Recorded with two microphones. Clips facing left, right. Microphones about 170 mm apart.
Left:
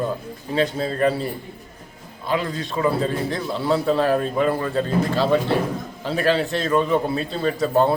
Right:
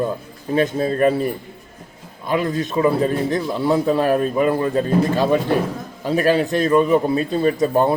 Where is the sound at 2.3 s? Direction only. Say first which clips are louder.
Right 4 dB; 15° right (ahead or behind).